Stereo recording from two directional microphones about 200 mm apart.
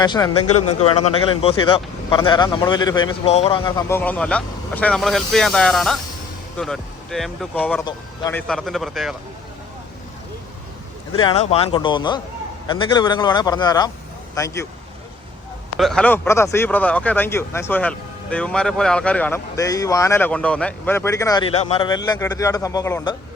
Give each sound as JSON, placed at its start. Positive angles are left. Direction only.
{"t": 0.0, "sound": "speech", "side_deg": 20}
{"t": 11.1, "sound": "speech", "side_deg": 25}
{"t": 15.8, "sound": "speech", "side_deg": 5}
{"t": 21.5, "sound": "speech", "side_deg": 30}